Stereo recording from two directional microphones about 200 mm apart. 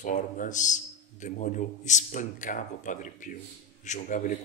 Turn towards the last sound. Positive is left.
turn(degrees=40)  # may be behind; listen again after turning